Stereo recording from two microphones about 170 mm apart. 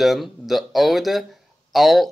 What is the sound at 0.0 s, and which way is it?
Speech, centre (ahead or behind).